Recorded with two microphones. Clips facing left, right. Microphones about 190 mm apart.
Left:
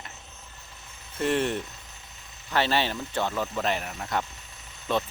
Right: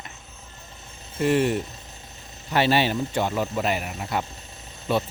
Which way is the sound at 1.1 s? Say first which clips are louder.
Right 4 dB; 5° right (ahead or behind).